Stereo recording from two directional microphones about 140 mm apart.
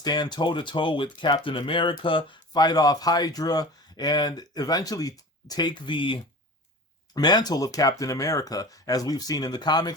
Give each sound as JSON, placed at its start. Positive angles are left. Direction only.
{"t": 0.0, "sound": "speech", "side_deg": 30}